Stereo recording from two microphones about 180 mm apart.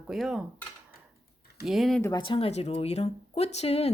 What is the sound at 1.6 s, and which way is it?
Speech, centre (ahead or behind).